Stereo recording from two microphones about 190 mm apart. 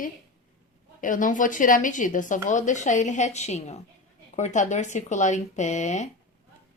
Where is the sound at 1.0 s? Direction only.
45° left (ahead or behind).